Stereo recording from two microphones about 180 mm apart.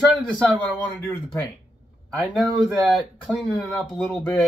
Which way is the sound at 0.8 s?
15° left (ahead or behind).